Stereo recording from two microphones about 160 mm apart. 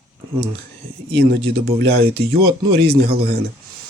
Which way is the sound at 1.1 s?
90° right.